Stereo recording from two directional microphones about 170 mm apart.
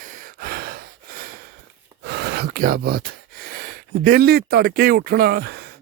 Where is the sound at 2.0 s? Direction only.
80° right.